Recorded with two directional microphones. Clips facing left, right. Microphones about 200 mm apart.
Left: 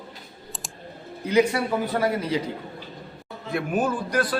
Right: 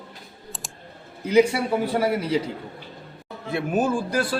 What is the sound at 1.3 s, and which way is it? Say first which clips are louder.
Speech: right 2 dB; 10° right (ahead or behind).